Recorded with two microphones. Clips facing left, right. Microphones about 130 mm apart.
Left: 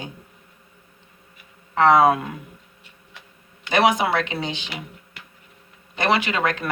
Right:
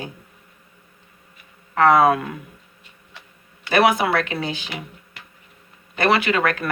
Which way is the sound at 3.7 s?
20° left (ahead or behind).